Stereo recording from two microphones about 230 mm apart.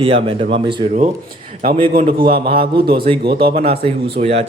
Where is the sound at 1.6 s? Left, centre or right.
Right.